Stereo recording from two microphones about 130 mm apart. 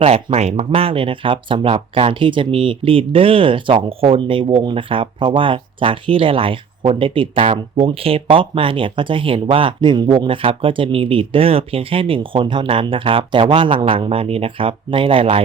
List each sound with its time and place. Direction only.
0.0 s speech: 50° right (ahead or behind)